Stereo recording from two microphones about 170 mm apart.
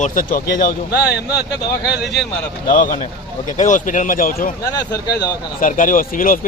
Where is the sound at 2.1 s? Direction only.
Centre (ahead or behind).